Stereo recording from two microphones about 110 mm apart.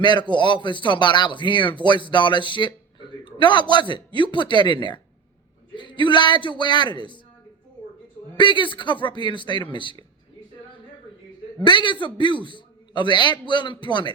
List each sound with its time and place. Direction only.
0.0 s speech: 45° left (ahead or behind)
8.4 s speech: 45° left (ahead or behind)
11.6 s speech: 45° left (ahead or behind)